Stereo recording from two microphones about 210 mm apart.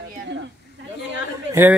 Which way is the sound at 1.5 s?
10° right (ahead or behind).